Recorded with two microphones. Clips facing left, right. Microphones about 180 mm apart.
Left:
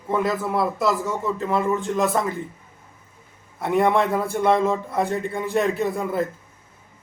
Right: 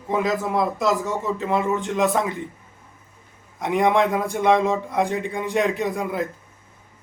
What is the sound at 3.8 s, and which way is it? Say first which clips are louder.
Speech: right 3 dB; 15° right (ahead or behind).